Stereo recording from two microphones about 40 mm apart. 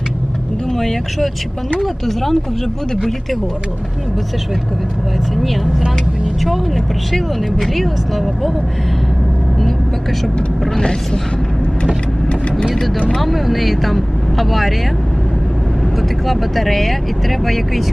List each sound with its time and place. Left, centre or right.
0.7 s speech: centre
6.4 s speech: centre
10.8 s speech: centre
13.1 s speech: centre
16.2 s speech: centre